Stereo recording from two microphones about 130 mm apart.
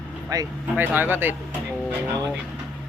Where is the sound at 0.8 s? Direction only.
15° right (ahead or behind).